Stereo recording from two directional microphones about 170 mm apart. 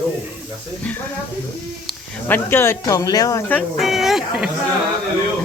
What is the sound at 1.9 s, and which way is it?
Speech, 10° left (ahead or behind).